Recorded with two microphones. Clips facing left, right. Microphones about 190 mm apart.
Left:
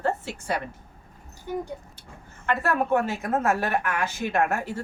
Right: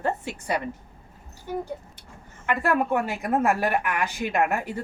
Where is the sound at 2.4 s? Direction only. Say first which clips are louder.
Right 1 dB; 15° right (ahead or behind).